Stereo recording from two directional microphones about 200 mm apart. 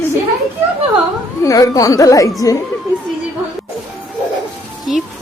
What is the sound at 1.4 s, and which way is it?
A woman's voice, 15° left (ahead or behind).